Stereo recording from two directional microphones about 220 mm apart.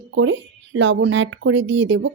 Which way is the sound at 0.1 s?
55° right (ahead or behind).